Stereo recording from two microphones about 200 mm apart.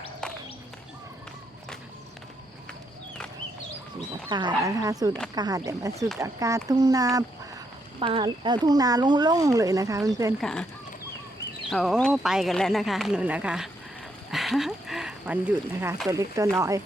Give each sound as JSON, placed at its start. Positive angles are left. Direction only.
{"t": 0.2, "sound": "a sound", "side_deg": 5}
{"t": 4.3, "sound": "speech", "side_deg": -20}
{"t": 10.4, "sound": "speech", "side_deg": 5}
{"t": 11.7, "sound": "speech", "side_deg": 0}